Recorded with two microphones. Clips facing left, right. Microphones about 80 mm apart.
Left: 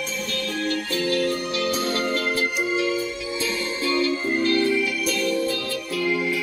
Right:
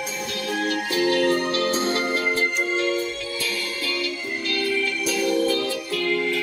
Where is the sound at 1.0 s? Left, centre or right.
Right.